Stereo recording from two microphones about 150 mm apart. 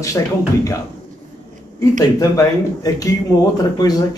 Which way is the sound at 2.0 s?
25° left (ahead or behind).